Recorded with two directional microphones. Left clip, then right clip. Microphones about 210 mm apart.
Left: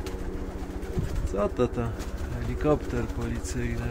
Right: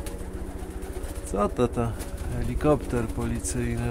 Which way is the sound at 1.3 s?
35° right (ahead or behind).